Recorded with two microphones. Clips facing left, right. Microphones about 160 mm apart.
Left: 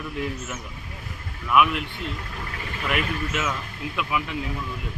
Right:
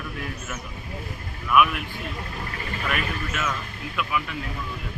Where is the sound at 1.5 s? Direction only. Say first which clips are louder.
Even; 20° left (ahead or behind).